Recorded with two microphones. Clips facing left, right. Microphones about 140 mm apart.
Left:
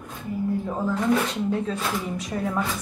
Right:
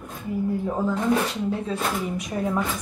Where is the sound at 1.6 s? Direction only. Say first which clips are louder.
Right 1 dB; 10° right (ahead or behind).